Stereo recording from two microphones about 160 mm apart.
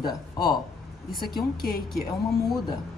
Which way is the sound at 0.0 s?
25° left (ahead or behind).